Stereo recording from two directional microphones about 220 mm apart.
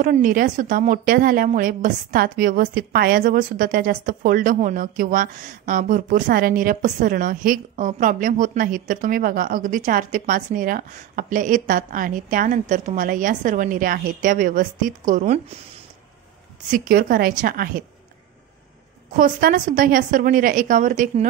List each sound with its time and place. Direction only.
0.0 s a woman's voice: 35° right (ahead or behind)
16.7 s a woman's voice: 40° right (ahead or behind)
19.1 s a woman's voice: 40° right (ahead or behind)